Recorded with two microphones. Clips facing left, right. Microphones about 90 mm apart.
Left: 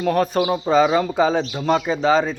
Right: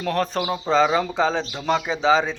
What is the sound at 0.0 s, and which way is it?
Speech, 5° left (ahead or behind).